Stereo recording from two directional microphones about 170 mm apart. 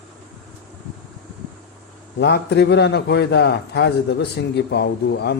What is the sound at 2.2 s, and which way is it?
A man's voice, 85° left.